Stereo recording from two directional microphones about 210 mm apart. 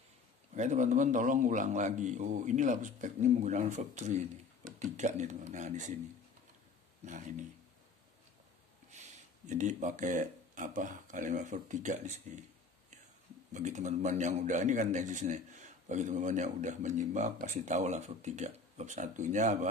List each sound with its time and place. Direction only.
0.6 s a man's voice: 35° right (ahead or behind)
7.1 s a man's voice: 35° right (ahead or behind)
9.5 s a man's voice: 35° right (ahead or behind)
13.5 s a man's voice: 35° right (ahead or behind)